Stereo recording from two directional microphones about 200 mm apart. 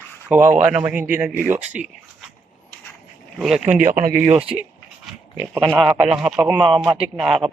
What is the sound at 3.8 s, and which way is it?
Speech, 45° right (ahead or behind).